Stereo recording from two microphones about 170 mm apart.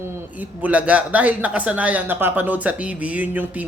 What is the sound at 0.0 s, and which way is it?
A man's voice, 10° right (ahead or behind).